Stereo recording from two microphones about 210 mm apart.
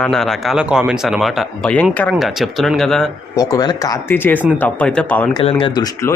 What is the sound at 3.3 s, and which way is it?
Speech, 15° left (ahead or behind).